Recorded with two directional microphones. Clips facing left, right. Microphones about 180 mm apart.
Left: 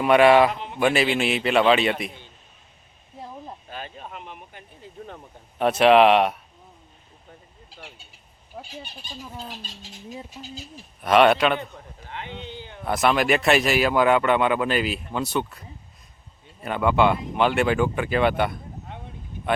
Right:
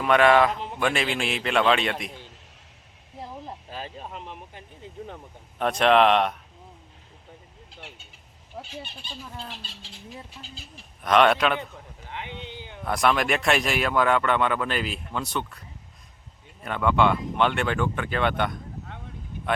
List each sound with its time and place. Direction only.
0.0 s speech: 10° left (ahead or behind)
3.7 s a sound: 30° right (ahead or behind)
4.5 s speech: 25° right (ahead or behind)
5.1 s speech: 5° left (ahead or behind)
8.5 s fowl: 5° left (ahead or behind)
9.2 s speech: 10° left (ahead or behind)
9.6 s speech: 45° left (ahead or behind)
10.4 s speech: 15° left (ahead or behind)
11.0 s speech: 5° left (ahead or behind)
12.0 s a sound: 15° right (ahead or behind)
12.8 s speech: 5° left (ahead or behind)
16.6 s speech: 5° left (ahead or behind)